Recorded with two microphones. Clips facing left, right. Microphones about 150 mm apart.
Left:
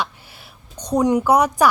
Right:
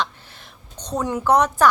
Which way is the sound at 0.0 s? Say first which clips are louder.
Even; 10° left (ahead or behind).